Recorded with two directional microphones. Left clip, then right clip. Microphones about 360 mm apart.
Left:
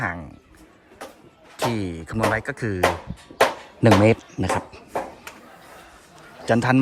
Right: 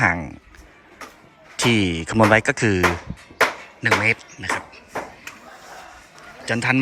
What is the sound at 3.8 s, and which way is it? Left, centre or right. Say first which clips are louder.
Speech: left 2 dB; centre.